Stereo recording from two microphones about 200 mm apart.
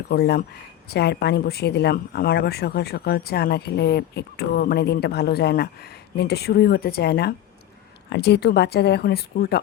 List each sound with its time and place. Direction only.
0.1 s speech: 55° left (ahead or behind)